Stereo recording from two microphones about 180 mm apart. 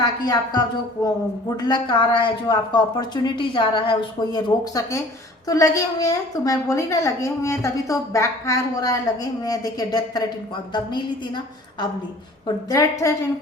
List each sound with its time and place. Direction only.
0.0 s a woman's voice: 20° left (ahead or behind)